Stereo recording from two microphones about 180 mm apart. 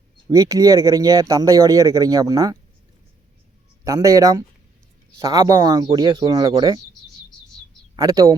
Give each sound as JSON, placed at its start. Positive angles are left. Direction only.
{"t": 0.3, "sound": "speech", "side_deg": -20}
{"t": 3.8, "sound": "speech", "side_deg": -20}
{"t": 7.9, "sound": "speech", "side_deg": -20}